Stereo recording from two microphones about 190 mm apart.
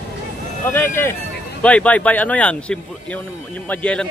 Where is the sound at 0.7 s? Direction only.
10° left (ahead or behind).